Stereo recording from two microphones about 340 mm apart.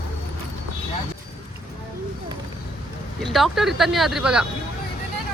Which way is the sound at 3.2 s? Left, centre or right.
Centre.